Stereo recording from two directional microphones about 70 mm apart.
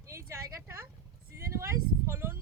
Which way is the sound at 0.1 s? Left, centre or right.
Right.